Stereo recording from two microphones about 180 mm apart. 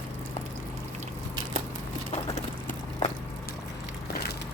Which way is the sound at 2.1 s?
40° left (ahead or behind).